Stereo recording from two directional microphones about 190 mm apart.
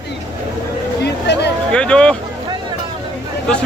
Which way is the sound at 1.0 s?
60° left (ahead or behind).